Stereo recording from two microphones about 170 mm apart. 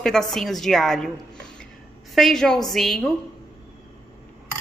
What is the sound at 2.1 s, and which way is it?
Speech, centre (ahead or behind).